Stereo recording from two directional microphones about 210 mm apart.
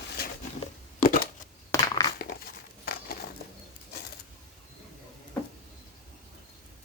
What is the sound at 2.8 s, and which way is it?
Crumpling, 45° left (ahead or behind).